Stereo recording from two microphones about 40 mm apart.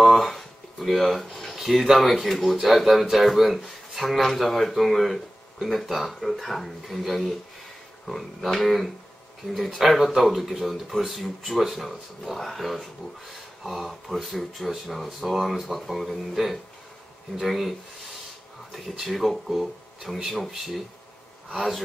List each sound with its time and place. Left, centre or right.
0.1 s a sound: centre
2.4 s speech: centre
19.0 s speech: centre